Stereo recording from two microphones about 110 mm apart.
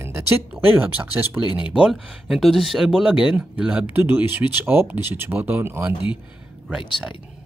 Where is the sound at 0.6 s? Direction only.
15° right (ahead or behind).